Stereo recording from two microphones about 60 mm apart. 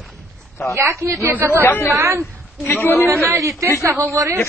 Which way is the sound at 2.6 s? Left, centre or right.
Left.